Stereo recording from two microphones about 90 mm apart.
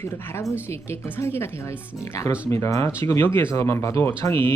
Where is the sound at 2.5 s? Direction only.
35° left (ahead or behind).